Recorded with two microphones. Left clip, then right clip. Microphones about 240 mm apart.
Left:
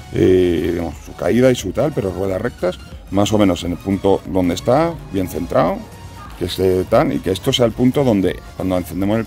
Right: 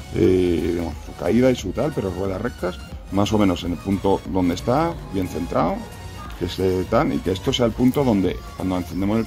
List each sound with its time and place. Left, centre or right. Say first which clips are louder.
0.1 s speech: left 4 dB; left